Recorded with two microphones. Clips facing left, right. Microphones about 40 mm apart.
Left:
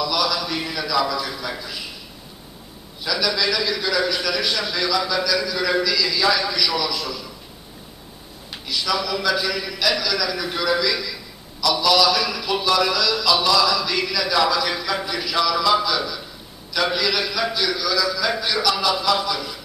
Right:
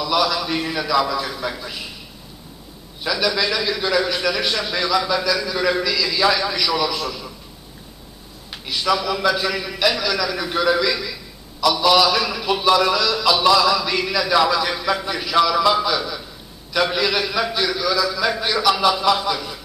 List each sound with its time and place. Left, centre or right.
0.0 s a sound: centre
0.6 s a man's voice: centre
3.0 s a man's voice: centre
8.6 s a man's voice: centre
16.9 s a man's voice: centre